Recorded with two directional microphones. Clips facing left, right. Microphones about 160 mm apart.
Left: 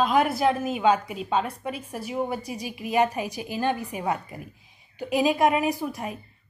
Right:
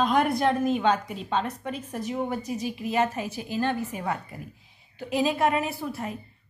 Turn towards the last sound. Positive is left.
turn(degrees=15)  # may be behind; listen again after turning